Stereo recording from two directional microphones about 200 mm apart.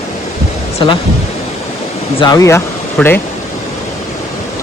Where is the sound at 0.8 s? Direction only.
25° left (ahead or behind).